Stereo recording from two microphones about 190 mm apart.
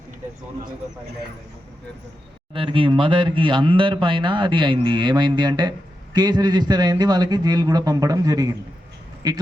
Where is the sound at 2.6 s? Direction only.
25° right (ahead or behind).